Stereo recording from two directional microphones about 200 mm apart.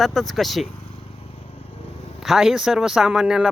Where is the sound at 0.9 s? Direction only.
30° left (ahead or behind).